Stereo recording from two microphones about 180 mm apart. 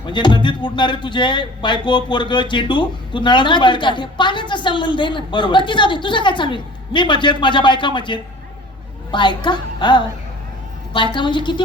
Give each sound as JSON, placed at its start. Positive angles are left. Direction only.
{"t": 0.0, "sound": "speech", "side_deg": 25}